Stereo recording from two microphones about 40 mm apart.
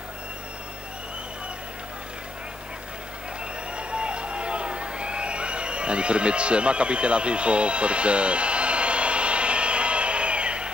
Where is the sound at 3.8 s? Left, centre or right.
Right.